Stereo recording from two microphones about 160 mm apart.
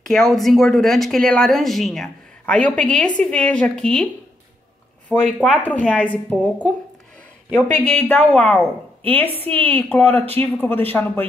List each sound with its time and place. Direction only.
0.1 s a woman's voice: centre (ahead or behind)
5.1 s a woman's voice: 10° left (ahead or behind)
7.7 s a woman's voice: 5° left (ahead or behind)